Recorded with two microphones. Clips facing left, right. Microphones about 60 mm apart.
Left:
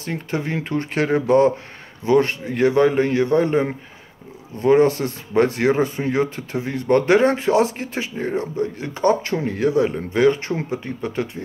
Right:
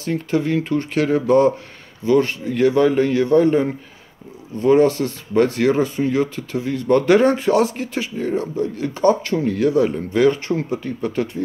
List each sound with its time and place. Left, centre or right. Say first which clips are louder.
0.0 s speech: right 5 dB; centre
7.2 s speech: right 1 dB; centre
7.9 s speech: right 2 dB; left